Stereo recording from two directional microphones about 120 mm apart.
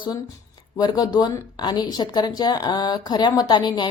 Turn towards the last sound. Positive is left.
turn(degrees=40)  # may be behind; listen again after turning